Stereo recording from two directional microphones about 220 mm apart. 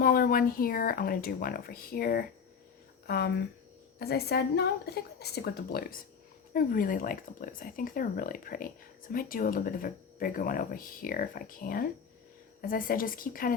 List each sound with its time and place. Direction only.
0.0 s a woman's voice: 40° left (ahead or behind)